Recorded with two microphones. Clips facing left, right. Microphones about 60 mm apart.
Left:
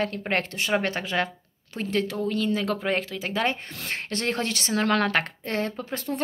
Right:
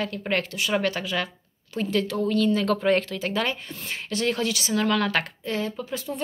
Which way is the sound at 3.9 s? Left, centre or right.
Left.